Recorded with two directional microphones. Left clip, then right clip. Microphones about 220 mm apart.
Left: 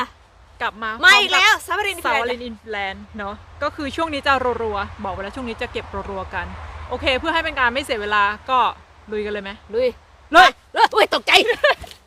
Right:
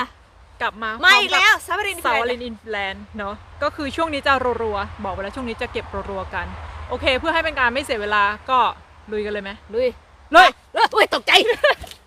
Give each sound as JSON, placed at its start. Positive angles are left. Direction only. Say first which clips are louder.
{"t": 0.6, "sound": "speech", "louder": "even", "side_deg": 0}
{"t": 1.0, "sound": "speech", "louder": "left 1 dB", "side_deg": 20}
{"t": 2.2, "sound": "speech", "louder": "right 1 dB", "side_deg": 0}
{"t": 10.4, "sound": "speech", "louder": "left 1 dB", "side_deg": 20}
{"t": 11.4, "sound": "speech", "louder": "even", "side_deg": 0}